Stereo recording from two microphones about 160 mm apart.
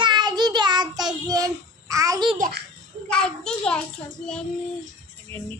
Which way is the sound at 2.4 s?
65° right (ahead or behind).